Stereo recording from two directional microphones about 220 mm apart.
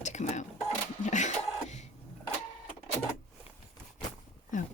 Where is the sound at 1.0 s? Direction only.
35° left (ahead or behind).